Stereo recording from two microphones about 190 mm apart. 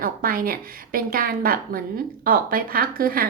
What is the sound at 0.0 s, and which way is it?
A woman's voice, 50° right (ahead or behind).